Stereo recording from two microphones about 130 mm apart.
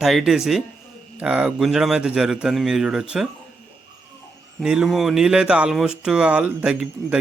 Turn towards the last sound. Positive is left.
turn(degrees=-10)  # may be behind; listen again after turning